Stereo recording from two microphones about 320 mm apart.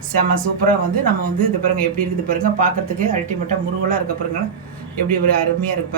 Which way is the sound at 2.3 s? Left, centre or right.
Right.